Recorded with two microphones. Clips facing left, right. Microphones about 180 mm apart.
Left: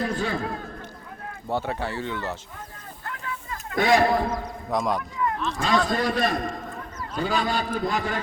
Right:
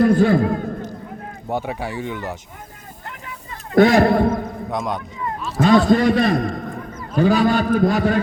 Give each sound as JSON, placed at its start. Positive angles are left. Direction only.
{"t": 0.0, "sound": "a man's voice", "side_deg": -50}
{"t": 1.5, "sound": "speech", "side_deg": -15}
{"t": 3.1, "sound": "vehicle", "side_deg": -25}
{"t": 3.8, "sound": "a man's voice", "side_deg": -55}
{"t": 4.7, "sound": "speech", "side_deg": 0}
{"t": 5.2, "sound": "a sound", "side_deg": -30}
{"t": 5.6, "sound": "a man's voice", "side_deg": -60}